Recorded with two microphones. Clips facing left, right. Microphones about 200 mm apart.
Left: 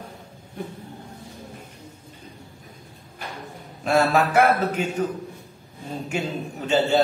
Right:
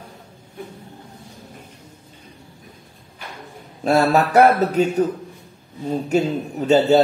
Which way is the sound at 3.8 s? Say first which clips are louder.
Right 3 dB; 40° right (ahead or behind).